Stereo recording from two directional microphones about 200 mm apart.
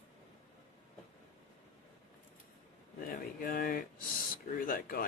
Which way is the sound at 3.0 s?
45° left (ahead or behind).